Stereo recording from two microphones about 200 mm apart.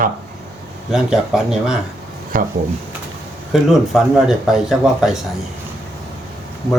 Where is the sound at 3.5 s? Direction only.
Centre (ahead or behind).